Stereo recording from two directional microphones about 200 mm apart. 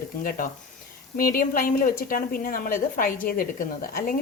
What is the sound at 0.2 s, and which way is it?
A woman's voice, 45° left (ahead or behind).